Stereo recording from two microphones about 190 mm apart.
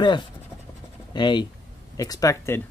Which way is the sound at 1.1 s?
25° left (ahead or behind).